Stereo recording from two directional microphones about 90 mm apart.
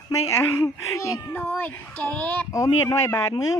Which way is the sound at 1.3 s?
20° left (ahead or behind).